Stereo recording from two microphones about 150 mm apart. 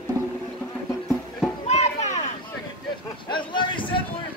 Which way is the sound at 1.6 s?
50° left (ahead or behind).